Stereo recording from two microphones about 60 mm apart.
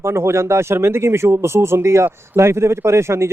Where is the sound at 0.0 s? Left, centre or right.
Right.